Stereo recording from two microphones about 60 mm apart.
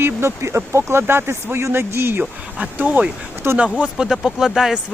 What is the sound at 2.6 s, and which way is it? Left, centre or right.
Speech, right.